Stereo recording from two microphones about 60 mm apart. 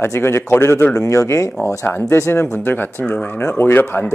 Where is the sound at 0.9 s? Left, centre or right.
Left.